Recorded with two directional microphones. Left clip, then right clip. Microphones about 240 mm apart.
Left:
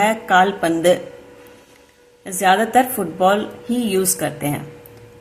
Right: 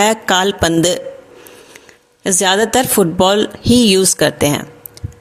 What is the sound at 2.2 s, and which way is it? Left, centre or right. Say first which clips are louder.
Speech: right 2 dB; right.